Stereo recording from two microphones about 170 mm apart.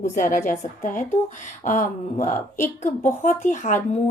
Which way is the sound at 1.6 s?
45° left (ahead or behind).